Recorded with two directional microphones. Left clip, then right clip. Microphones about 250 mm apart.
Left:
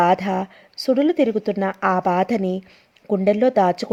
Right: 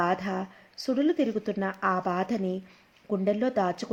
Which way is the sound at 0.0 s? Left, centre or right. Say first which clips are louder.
Left 10 dB; left.